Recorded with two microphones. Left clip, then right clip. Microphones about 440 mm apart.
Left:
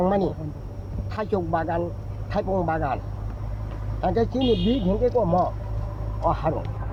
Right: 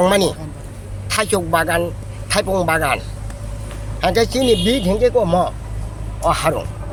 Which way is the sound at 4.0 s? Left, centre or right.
Left.